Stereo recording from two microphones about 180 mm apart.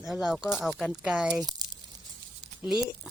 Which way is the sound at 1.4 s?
20° right (ahead or behind).